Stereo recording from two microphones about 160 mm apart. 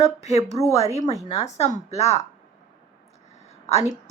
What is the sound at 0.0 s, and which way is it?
Speech, 45° left (ahead or behind).